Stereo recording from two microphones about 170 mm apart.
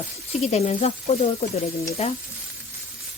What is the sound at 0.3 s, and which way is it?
Speech, 40° left (ahead or behind).